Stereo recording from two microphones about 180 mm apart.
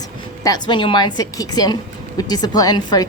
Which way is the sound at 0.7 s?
25° left (ahead or behind).